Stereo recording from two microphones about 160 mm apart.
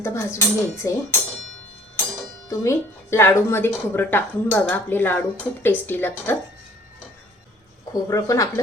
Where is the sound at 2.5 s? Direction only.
15° left (ahead or behind).